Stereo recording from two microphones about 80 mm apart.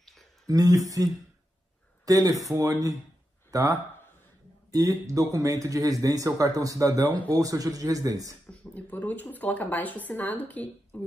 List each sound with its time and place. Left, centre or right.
0.0 s a sound: centre
0.5 s a man's voice: right
8.5 s speech: centre